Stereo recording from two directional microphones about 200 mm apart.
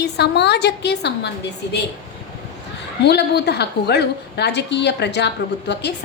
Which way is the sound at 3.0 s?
55° left (ahead or behind).